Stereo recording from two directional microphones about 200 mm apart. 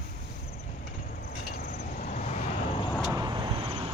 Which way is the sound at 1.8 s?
40° left (ahead or behind).